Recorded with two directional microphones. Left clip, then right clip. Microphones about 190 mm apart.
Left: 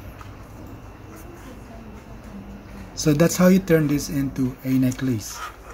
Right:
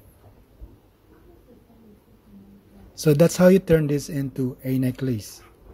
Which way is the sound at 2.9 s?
40° right (ahead or behind).